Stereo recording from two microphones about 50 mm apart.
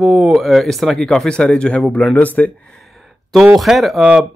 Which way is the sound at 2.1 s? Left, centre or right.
Left.